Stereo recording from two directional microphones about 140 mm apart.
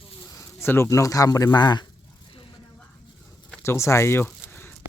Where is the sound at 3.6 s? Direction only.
20° left (ahead or behind).